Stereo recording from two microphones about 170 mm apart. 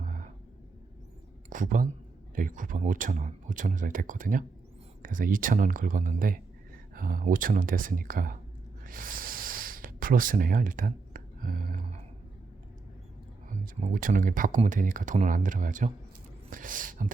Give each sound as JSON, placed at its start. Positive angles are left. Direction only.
{"t": 0.0, "sound": "a sound", "side_deg": -50}
{"t": 1.5, "sound": "speech", "side_deg": -50}
{"t": 8.8, "sound": "snort", "side_deg": -55}
{"t": 13.7, "sound": "speech", "side_deg": -50}